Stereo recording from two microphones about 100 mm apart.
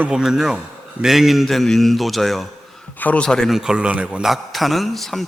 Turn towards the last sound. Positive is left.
turn(degrees=0)  # may be behind; listen again after turning